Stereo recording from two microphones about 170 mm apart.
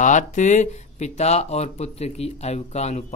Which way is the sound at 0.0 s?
45° left (ahead or behind).